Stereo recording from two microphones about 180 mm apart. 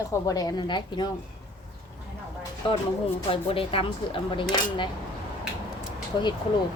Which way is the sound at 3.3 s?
30° left (ahead or behind).